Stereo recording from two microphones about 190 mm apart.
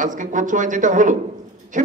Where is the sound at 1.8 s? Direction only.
45° right (ahead or behind).